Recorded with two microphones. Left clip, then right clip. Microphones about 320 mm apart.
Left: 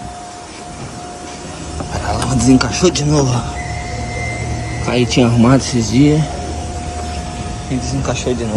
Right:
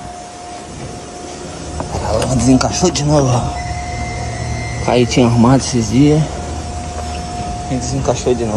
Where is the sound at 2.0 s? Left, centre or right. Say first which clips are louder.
Even; centre.